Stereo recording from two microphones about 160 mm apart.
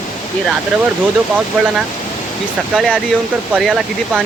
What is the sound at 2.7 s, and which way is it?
Speech, 5° right (ahead or behind).